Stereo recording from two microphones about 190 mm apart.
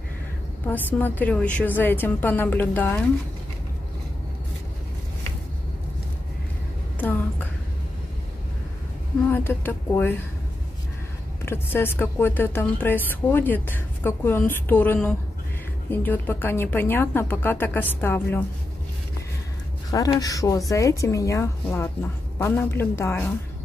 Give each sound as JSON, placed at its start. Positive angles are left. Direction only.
{"t": 0.7, "sound": "speech", "side_deg": 10}
{"t": 7.0, "sound": "a sound", "side_deg": 10}
{"t": 9.3, "sound": "speech", "side_deg": 10}
{"t": 11.4, "sound": "speech", "side_deg": 10}
{"t": 19.9, "sound": "speech", "side_deg": 20}